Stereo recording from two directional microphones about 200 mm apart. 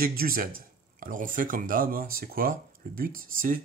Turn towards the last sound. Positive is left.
turn(degrees=-45)  # may be behind; listen again after turning